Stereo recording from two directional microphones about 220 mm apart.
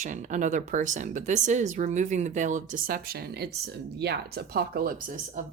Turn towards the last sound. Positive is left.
turn(degrees=-40)  # may be behind; listen again after turning